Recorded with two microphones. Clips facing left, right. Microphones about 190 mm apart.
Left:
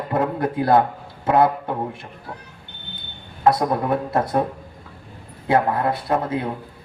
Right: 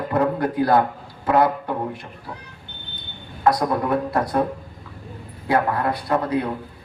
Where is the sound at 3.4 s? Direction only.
25° left (ahead or behind).